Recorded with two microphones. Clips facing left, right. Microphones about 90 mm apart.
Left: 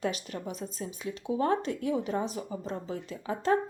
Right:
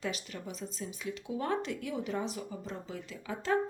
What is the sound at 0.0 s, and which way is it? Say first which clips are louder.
Speech: left 5 dB; 40° left (ahead or behind).